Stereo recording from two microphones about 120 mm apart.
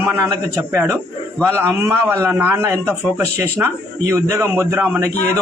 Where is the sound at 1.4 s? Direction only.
20° right (ahead or behind).